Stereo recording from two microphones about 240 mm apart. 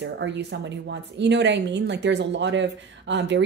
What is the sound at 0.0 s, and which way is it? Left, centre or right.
A woman's voice, right.